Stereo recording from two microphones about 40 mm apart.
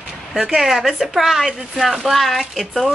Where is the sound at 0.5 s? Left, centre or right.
Centre.